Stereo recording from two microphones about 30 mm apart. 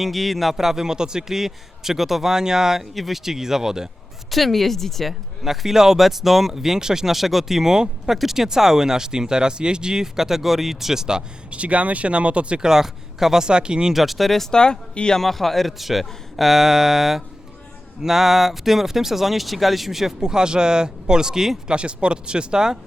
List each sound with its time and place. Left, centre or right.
0.0 s speech: centre
0.5 s speech: centre
2.3 s speech: centre
2.9 s speech: centre
4.3 s speech: centre
5.4 s speech: centre
11.5 s speech: right
12.5 s speech: centre
13.5 s speech: right
13.9 s speech: centre
14.5 s speech: left
15.2 s speech: centre
20.1 s speech: right
21.7 s speech: right